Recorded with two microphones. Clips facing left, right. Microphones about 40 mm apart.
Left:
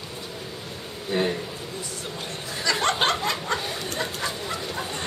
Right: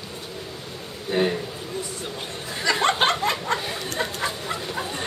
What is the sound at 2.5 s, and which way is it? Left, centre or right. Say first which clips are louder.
Chuckle: right 3 dB; centre.